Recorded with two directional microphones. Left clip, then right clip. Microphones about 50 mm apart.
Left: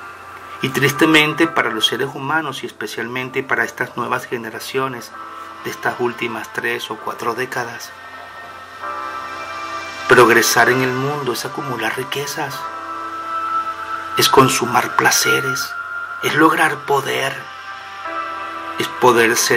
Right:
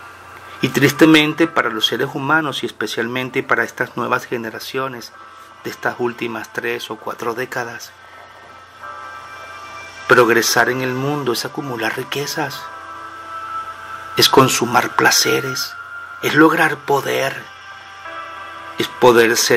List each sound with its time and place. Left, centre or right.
0.6 s speech: right
8.8 s music: left
10.0 s speech: right
14.1 s speech: right
18.0 s music: left
18.8 s speech: right